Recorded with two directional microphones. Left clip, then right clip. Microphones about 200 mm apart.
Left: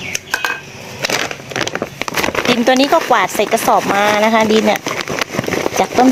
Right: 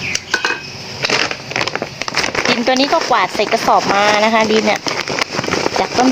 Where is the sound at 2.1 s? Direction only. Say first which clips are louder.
Left 1 dB; 35° left (ahead or behind).